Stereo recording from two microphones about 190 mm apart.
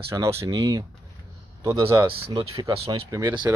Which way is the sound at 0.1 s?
15° right (ahead or behind).